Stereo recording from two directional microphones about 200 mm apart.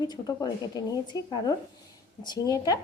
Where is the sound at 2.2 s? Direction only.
20° left (ahead or behind).